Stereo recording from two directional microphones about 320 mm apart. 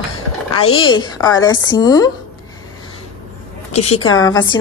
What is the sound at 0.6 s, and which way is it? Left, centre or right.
A woman's voice, centre.